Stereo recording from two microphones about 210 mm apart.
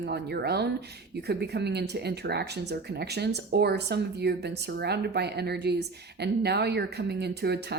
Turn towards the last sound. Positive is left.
turn(degrees=-50)  # may be behind; listen again after turning